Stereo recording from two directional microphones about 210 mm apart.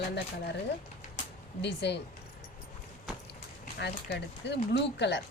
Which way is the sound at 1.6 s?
55° left (ahead or behind).